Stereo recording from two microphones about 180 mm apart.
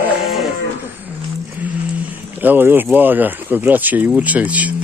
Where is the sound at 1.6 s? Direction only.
10° right (ahead or behind).